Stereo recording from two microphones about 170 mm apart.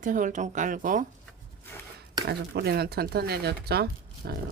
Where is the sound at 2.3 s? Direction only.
70° right (ahead or behind).